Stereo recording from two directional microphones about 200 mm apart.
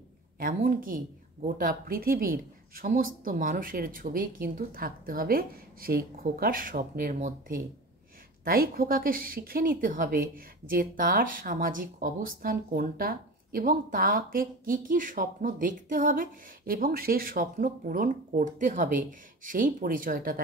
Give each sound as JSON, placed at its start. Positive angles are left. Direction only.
{"t": 0.4, "sound": "a woman's voice", "side_deg": -45}